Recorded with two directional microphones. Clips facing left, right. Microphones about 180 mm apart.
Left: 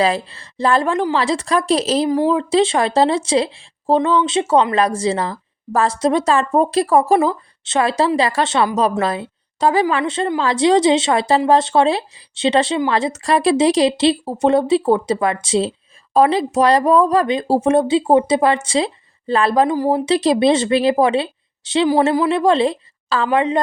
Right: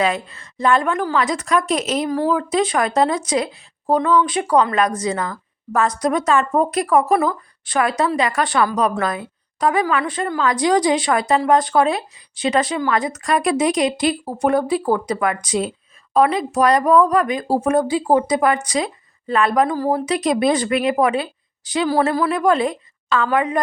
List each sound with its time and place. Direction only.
0.0 s speech: 30° left (ahead or behind)
2.0 s speech: 20° left (ahead or behind)
19.7 s speech: 15° left (ahead or behind)
20.1 s speech: 30° left (ahead or behind)